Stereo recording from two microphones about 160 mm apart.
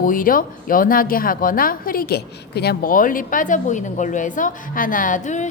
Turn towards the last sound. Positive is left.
turn(degrees=50)  # may be behind; listen again after turning